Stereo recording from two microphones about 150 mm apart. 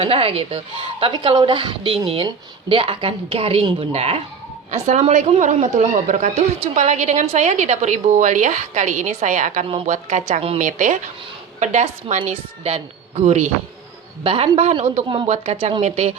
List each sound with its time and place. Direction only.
0.0 s a woman's voice: 40° right (ahead or behind)
10.6 s a woman's voice: 55° right (ahead or behind); by 15.3 s 35° right (ahead or behind)
15.3 s a woman's voice: 45° right (ahead or behind)